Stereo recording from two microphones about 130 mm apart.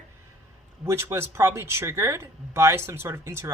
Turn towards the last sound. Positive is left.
turn(degrees=-20)  # may be behind; listen again after turning